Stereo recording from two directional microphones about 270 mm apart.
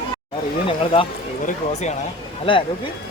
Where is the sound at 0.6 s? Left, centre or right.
Centre.